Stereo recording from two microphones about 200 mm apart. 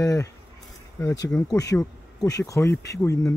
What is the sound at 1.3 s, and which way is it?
Speech, 5° left (ahead or behind).